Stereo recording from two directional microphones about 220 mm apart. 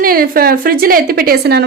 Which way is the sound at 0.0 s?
40° right (ahead or behind).